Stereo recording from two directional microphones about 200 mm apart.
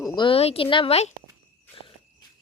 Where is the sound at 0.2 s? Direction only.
30° left (ahead or behind).